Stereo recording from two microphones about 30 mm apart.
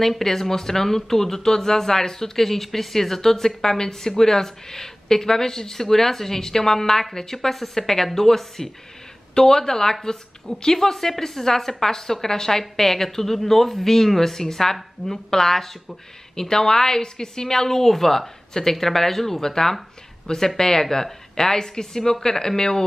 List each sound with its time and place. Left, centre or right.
0.0 s speech: centre